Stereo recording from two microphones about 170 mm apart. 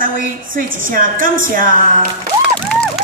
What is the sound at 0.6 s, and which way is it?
A woman's voice, 55° right (ahead or behind).